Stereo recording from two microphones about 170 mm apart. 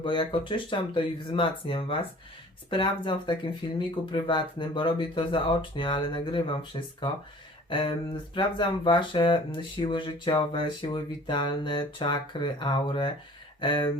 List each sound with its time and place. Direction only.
0.0 s speech: 30° left (ahead or behind)